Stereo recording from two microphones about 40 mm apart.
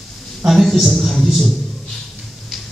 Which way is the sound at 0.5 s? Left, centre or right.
Centre.